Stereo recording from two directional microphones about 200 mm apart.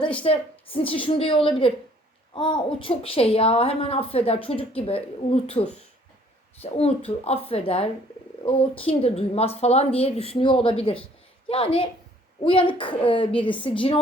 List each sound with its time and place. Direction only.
0.2 s a woman's voice: 25° left (ahead or behind)